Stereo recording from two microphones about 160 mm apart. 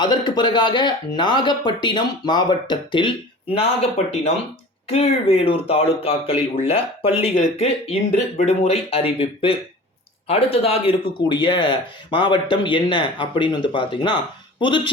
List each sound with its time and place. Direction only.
0.0 s speech: 25° left (ahead or behind)